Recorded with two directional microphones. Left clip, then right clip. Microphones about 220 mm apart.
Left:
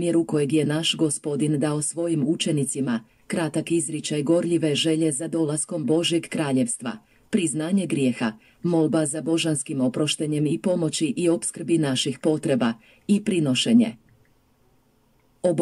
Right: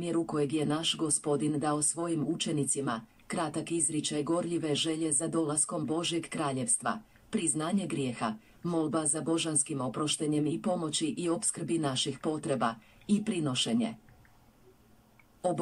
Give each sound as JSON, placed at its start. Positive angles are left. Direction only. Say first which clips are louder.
{"t": 0.0, "sound": "speech", "louder": "left 9 dB", "side_deg": 40}